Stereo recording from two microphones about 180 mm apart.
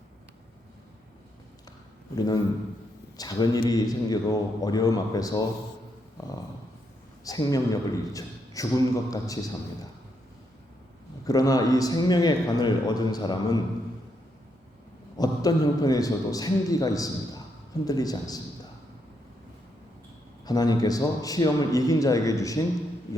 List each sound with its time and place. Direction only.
2.1 s a man's voice: 20° left (ahead or behind)
7.3 s a man's voice: 20° left (ahead or behind)
11.3 s a man's voice: 20° left (ahead or behind)
15.2 s a man's voice: 20° left (ahead or behind)
20.4 s a man's voice: 20° left (ahead or behind)